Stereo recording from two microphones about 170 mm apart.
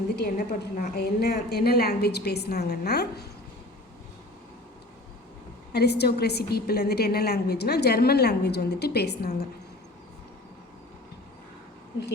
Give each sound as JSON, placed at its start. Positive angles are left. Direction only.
{"t": 0.2, "sound": "a woman's voice", "side_deg": 55}
{"t": 5.7, "sound": "a woman's voice", "side_deg": 75}